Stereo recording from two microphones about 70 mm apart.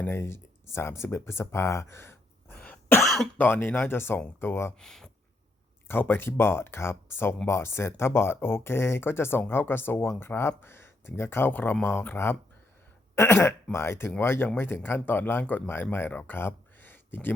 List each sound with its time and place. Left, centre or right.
0.1 s speech: left
4.8 s a sound: centre
5.9 s speech: left